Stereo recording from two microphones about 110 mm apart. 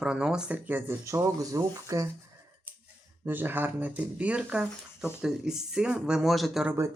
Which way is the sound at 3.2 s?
20° right (ahead or behind).